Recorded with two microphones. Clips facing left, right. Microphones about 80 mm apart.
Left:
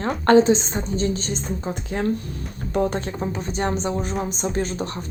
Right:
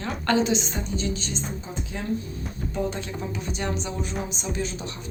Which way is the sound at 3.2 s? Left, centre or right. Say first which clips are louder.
Left 6 dB; left.